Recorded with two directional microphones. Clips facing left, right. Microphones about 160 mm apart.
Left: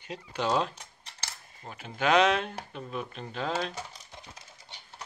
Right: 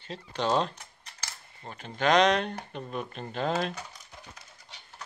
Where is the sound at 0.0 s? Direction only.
10° left (ahead or behind).